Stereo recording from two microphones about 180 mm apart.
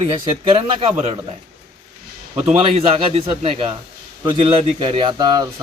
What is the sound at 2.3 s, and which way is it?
A man's voice, 35° right (ahead or behind).